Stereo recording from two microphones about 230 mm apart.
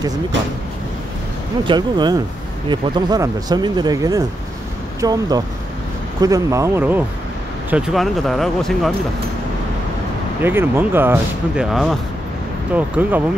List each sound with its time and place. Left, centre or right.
1.7 s speech: centre
10.4 s speech: centre